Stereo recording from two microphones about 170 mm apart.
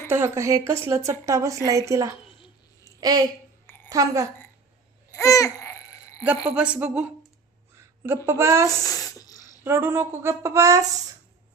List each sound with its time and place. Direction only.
0.1 s a woman's voice: 15° right (ahead or behind)
2.8 s a sound: 20° right (ahead or behind)
3.8 s a woman's voice: 20° right (ahead or behind)
5.1 s babbling: 20° left (ahead or behind)
6.2 s a woman's voice: 10° right (ahead or behind)
7.8 s a sound: 15° right (ahead or behind)
8.3 s a woman's voice: 15° right (ahead or behind)
8.7 s a sound: 20° left (ahead or behind)
9.6 s a woman's voice: 15° right (ahead or behind)